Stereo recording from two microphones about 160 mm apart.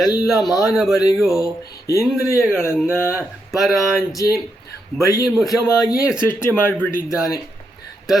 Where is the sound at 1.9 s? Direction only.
20° left (ahead or behind).